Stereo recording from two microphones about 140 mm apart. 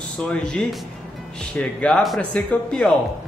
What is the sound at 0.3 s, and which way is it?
Speech, 5° left (ahead or behind).